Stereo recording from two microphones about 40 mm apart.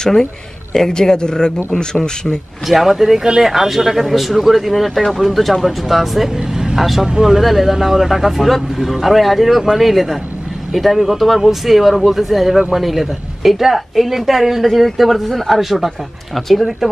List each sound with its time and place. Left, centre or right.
0.0 s a man's voice: centre
2.7 s speech: centre
6.3 s speech: centre